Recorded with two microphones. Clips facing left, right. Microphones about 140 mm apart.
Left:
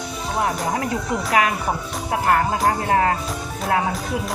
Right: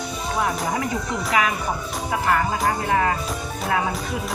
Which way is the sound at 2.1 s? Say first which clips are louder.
Left 3 dB; 50° left (ahead or behind).